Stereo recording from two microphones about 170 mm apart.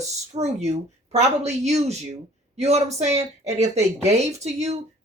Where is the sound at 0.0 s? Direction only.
40° right (ahead or behind).